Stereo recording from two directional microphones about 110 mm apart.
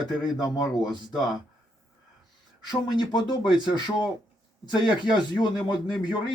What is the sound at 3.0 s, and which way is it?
Speech, 45° left (ahead or behind).